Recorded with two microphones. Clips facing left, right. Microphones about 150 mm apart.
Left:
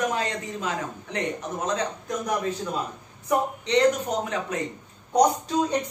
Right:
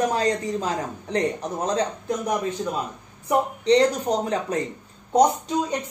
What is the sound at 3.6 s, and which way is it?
Speech, 35° right (ahead or behind).